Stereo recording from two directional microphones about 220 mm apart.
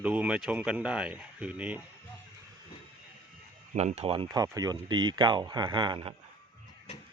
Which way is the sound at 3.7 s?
30° right (ahead or behind).